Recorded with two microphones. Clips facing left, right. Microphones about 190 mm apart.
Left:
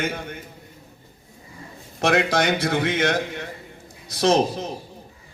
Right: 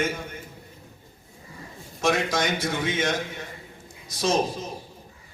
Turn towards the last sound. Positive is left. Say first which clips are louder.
# left 5 dB
turn(degrees=65)  # may be behind; listen again after turning